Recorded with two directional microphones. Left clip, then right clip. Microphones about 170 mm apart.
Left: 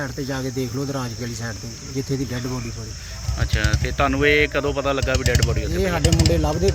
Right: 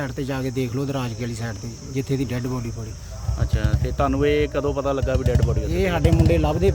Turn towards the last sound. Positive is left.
turn(degrees=0)  # may be behind; listen again after turning